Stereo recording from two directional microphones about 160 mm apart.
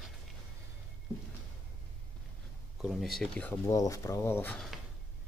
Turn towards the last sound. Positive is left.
turn(degrees=10)  # may be behind; listen again after turning